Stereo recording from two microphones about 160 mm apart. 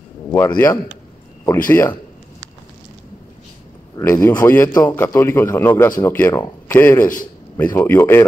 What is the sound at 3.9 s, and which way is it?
A man's voice, 20° left (ahead or behind).